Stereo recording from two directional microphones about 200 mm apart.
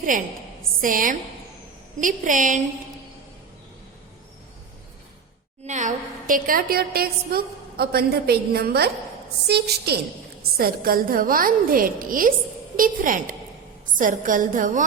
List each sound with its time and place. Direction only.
0.8 s a woman's voice: 40° right (ahead or behind)
5.6 s a woman's voice: 40° right (ahead or behind)